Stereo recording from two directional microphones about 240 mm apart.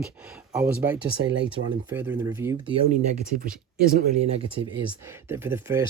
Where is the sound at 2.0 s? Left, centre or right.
Centre.